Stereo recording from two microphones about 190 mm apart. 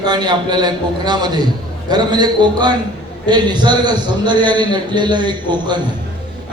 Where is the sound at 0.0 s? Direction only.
20° right (ahead or behind).